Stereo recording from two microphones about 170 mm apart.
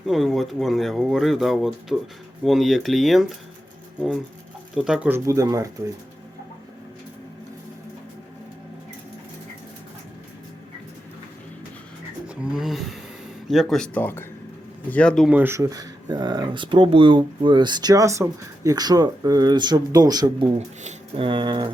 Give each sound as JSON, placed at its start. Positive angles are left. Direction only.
{"t": 0.1, "sound": "speech", "side_deg": 0}
{"t": 4.7, "sound": "speech", "side_deg": -5}
{"t": 12.3, "sound": "speech", "side_deg": -5}
{"t": 15.3, "sound": "speech", "side_deg": -10}